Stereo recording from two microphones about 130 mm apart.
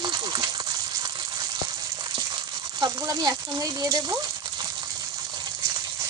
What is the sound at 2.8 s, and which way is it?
Speech, 30° right (ahead or behind).